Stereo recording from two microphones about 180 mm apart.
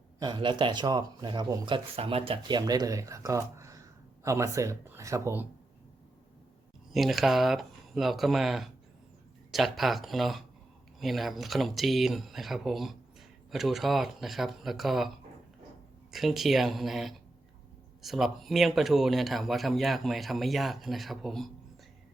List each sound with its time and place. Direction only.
0.2 s speech: 25° right (ahead or behind)
6.9 s a man's voice: centre (ahead or behind)
16.1 s a man's voice: centre (ahead or behind)